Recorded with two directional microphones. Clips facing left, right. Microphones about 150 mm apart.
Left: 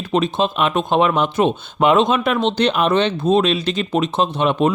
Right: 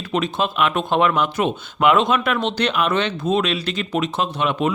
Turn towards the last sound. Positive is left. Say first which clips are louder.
# left 4 dB
turn(degrees=30)  # may be behind; listen again after turning